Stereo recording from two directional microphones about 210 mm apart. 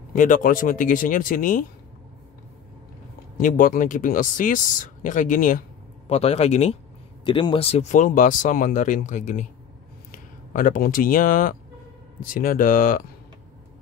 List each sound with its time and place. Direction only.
0.1 s speech: 40° left (ahead or behind)
3.3 s speech: 40° left (ahead or behind)